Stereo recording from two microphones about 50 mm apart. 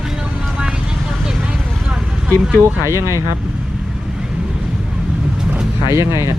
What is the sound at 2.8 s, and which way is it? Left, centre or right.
Speech, right.